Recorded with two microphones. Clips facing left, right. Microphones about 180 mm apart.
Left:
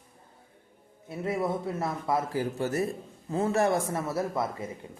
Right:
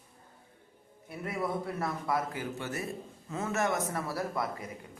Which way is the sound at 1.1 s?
25° left (ahead or behind).